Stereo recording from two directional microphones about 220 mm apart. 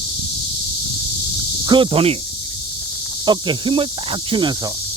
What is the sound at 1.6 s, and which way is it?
Speech, 20° right (ahead or behind).